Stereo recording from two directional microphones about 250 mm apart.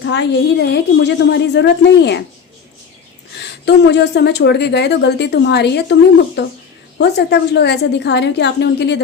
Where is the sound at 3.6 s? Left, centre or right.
Left.